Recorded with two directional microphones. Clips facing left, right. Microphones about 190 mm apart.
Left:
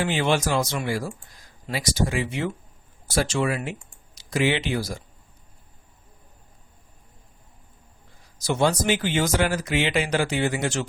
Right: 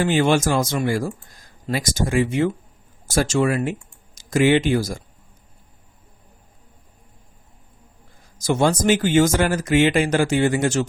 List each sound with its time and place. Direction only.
0.0 s speech: 45° right (ahead or behind)
8.4 s speech: 45° right (ahead or behind)